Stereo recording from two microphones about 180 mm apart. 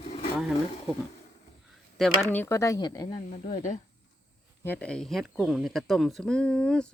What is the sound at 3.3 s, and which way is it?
Speech, 45° left (ahead or behind).